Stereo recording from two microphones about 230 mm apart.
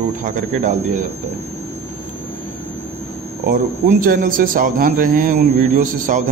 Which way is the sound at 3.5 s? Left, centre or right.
Right.